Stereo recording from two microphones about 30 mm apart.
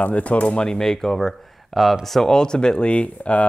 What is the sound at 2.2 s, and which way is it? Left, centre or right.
Speech, left.